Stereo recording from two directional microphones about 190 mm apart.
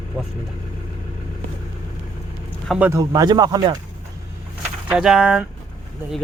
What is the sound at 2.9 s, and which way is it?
Speech, 20° right (ahead or behind).